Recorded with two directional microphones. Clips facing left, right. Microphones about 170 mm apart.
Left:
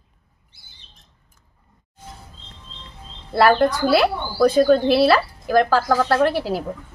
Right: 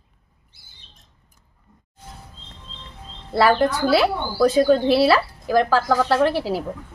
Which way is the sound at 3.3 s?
5° right (ahead or behind).